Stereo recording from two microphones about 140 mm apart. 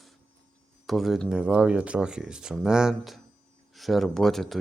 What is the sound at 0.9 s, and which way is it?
Speech, centre (ahead or behind).